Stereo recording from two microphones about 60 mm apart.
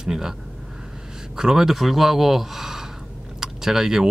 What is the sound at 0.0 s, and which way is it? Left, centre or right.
Speech, centre.